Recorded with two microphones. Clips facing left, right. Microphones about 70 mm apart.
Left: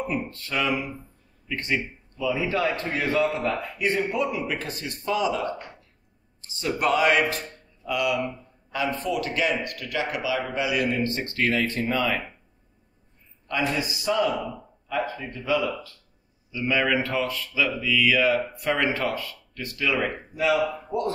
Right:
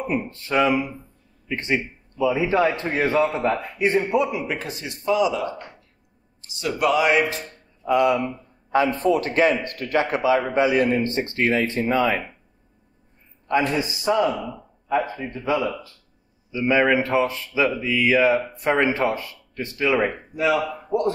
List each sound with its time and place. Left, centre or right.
0.0 s speech: right
4.6 s speech: left
6.8 s music: left
7.2 s speech: left
7.8 s a man's voice: right
13.7 s a man's voice: right